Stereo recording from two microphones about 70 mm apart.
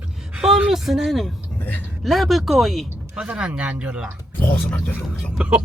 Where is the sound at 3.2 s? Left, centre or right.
Centre.